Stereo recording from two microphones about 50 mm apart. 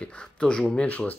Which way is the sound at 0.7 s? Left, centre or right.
Left.